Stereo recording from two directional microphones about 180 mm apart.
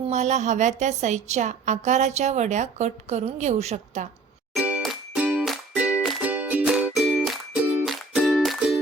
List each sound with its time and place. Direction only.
0.1 s a woman's voice: 40° right (ahead or behind)
4.5 s music: 5° right (ahead or behind)